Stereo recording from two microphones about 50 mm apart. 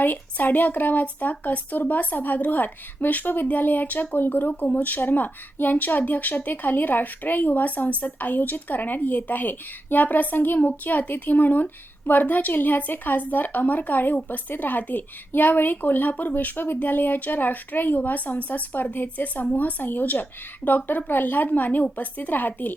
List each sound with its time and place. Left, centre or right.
0.0 s speech: left